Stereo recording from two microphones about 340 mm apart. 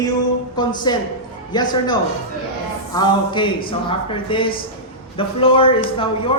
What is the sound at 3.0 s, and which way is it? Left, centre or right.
A woman's voice, centre.